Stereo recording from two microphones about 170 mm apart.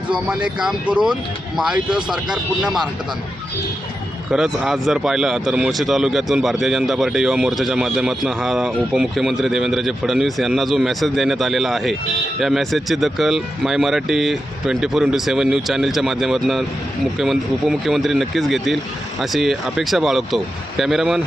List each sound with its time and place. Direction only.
0.1 s speech: 5° right (ahead or behind)
4.3 s speech: 5° right (ahead or behind)